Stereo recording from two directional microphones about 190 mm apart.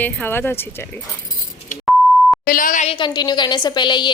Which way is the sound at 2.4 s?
45° left (ahead or behind).